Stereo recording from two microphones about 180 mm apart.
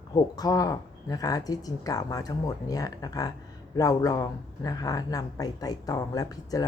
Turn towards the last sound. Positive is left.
turn(degrees=20)  # may be behind; listen again after turning